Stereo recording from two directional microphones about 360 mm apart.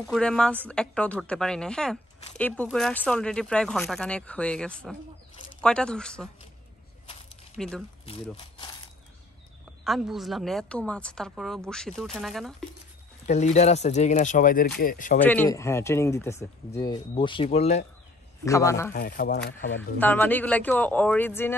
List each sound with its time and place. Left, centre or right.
0.0 s a woman's voice: centre
7.5 s speech: centre
8.4 s a sound: centre
9.8 s a woman's voice: centre
13.3 s speech: centre
15.2 s speech: centre
18.9 s speech: left
20.0 s a woman's voice: centre